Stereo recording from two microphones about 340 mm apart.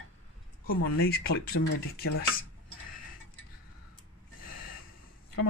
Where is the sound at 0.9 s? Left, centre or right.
Left.